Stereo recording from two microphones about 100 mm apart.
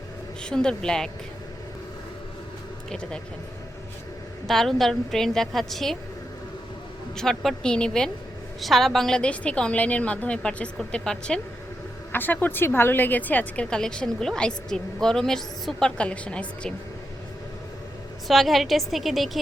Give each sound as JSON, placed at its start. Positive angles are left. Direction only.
{"t": 0.4, "sound": "a woman's voice", "side_deg": 10}
{"t": 2.9, "sound": "a woman's voice", "side_deg": 10}
{"t": 4.4, "sound": "a woman's voice", "side_deg": 0}
{"t": 7.2, "sound": "a woman's voice", "side_deg": 5}
{"t": 12.1, "sound": "a woman's voice", "side_deg": 20}
{"t": 18.3, "sound": "a woman's voice", "side_deg": 0}